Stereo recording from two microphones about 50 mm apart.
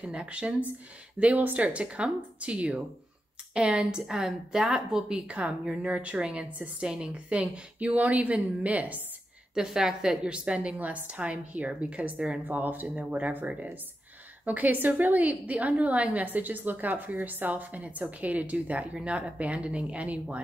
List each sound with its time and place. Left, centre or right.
0.0 s a woman's voice: right
9.5 s a woman's voice: centre
10.2 s a woman's voice: right
12.4 s a woman's voice: right